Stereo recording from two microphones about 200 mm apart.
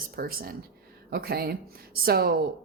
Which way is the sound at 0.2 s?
50° right (ahead or behind).